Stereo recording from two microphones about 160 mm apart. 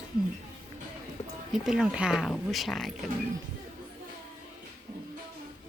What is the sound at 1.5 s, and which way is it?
Speech, centre (ahead or behind).